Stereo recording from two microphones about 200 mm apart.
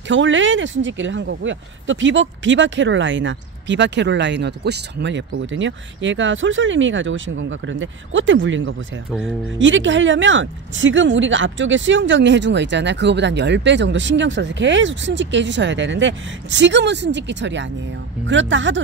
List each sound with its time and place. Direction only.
0.1 s speech: 70° right (ahead or behind)